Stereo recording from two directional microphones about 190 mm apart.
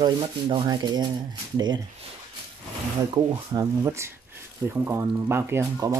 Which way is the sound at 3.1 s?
20° right (ahead or behind).